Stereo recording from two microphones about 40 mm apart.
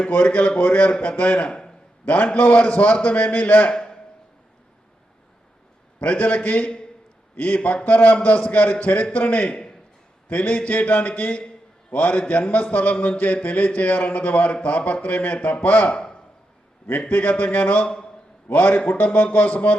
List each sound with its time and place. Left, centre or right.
0.0 s a man's voice: left
3.7 s a man's voice: left
6.0 s a man's voice: left
17.1 s a man's voice: left
17.8 s a man's voice: left
18.5 s a man's voice: left